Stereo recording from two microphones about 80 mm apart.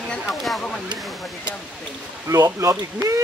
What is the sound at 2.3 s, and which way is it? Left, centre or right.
Speech, right.